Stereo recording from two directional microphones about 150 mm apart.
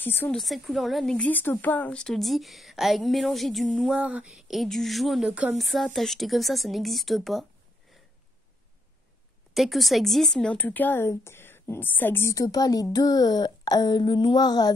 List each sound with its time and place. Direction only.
0.0 s a woman's voice: 15° left (ahead or behind)
0.4 s a woman's voice: centre (ahead or behind)
9.5 s a woman's voice: centre (ahead or behind); by 14.7 s 25° left (ahead or behind)